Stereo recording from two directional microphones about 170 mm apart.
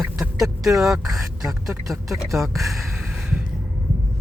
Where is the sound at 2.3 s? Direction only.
Centre (ahead or behind).